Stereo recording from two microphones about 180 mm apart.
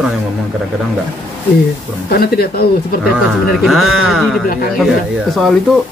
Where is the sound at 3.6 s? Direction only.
Centre (ahead or behind).